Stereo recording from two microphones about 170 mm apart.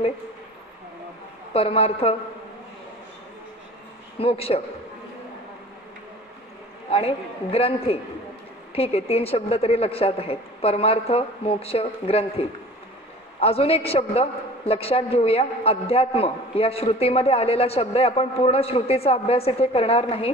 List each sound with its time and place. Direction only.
1.5 s a man's voice: 35° left (ahead or behind)
4.2 s a man's voice: 35° left (ahead or behind)
6.9 s a man's voice: 35° left (ahead or behind)